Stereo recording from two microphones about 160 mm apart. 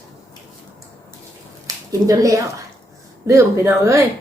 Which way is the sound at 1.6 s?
20° right (ahead or behind).